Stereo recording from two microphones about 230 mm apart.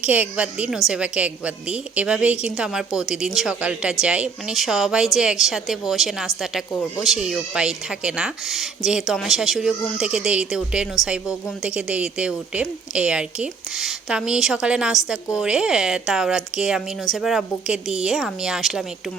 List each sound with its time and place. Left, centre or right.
0.0 s speech: centre